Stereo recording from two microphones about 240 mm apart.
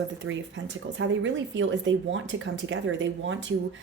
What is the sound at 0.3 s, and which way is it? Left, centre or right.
A woman's voice, right.